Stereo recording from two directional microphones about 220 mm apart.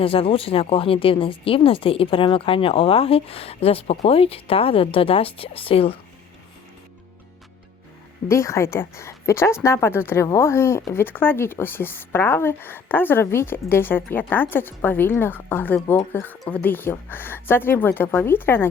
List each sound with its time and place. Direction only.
0.0 s speech: 25° left (ahead or behind)
8.3 s speech: 15° left (ahead or behind)